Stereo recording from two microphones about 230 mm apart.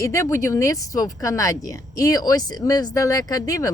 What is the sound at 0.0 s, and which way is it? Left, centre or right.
Speech, centre.